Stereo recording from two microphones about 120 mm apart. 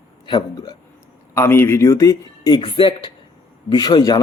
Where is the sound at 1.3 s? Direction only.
20° left (ahead or behind).